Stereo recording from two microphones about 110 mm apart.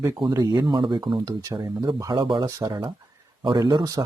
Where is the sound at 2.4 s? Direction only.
30° right (ahead or behind).